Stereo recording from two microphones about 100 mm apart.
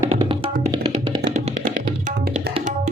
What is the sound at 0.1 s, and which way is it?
Music, 75° right (ahead or behind).